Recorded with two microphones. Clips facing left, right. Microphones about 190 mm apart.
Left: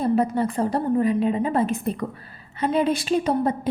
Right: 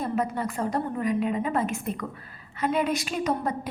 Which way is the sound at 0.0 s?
30° left (ahead or behind).